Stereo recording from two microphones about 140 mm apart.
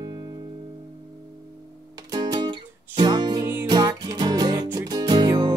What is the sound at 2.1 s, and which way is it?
Music, 30° right (ahead or behind).